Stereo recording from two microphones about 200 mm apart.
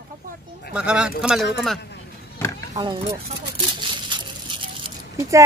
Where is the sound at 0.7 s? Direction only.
5° right (ahead or behind).